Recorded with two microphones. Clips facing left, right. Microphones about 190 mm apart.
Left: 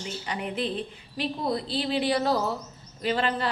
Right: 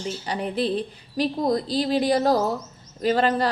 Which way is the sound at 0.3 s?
35° right (ahead or behind).